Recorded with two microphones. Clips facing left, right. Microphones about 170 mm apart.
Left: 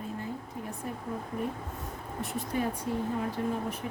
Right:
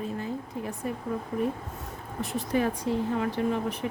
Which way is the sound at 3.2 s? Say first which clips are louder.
Right 4 dB; 80° right.